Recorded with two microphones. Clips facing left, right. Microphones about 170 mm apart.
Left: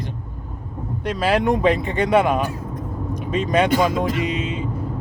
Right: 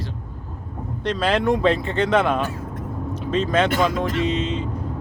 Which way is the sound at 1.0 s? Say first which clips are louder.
Left 1 dB; 10° left (ahead or behind).